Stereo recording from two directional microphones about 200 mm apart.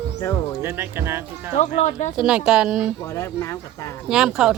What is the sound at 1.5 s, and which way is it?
Speech, 35° left (ahead or behind).